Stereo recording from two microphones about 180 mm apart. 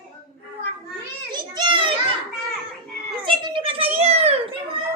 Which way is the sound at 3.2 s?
30° right (ahead or behind).